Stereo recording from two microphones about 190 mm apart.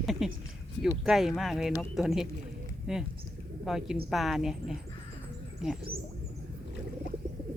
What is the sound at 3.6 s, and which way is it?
Speech, centre (ahead or behind).